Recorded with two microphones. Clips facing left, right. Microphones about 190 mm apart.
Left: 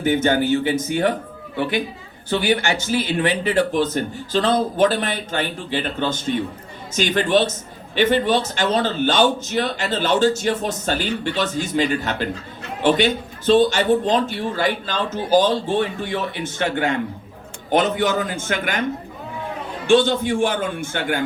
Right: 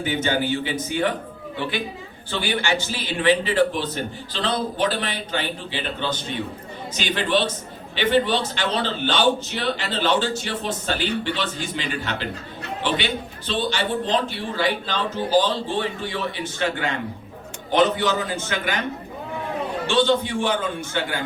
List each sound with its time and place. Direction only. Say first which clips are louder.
0.0 s a man's voice: left 5 dB; 50° left (ahead or behind)
2.6 s a man's voice: left 3 dB; 45° left (ahead or behind)
19.9 s a man's voice: left 5 dB; 50° left (ahead or behind)